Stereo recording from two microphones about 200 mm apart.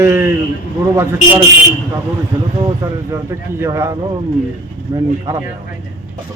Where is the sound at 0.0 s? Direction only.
15° right (ahead or behind).